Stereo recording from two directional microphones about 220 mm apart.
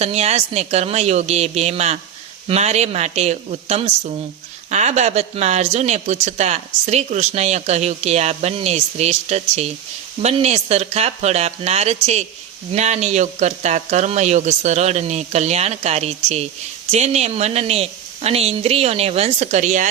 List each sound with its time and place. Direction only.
0.0 s speech: 30° right (ahead or behind)